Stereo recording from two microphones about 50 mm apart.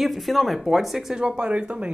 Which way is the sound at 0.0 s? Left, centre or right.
Centre.